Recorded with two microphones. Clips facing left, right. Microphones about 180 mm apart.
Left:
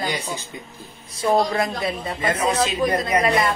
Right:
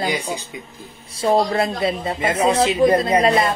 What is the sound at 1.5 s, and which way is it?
Speech, 25° right (ahead or behind).